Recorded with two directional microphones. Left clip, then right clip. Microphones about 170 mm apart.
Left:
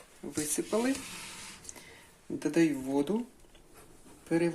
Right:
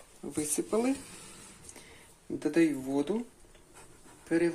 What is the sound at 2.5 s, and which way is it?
Speech, 10° left (ahead or behind).